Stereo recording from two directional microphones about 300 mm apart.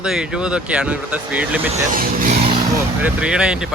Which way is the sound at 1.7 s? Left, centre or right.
Right.